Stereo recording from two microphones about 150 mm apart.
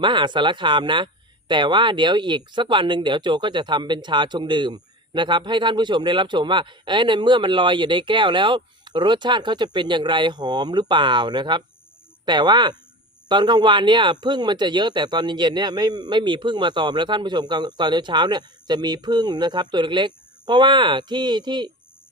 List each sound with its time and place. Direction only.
0.0 s speech: 30° right (ahead or behind)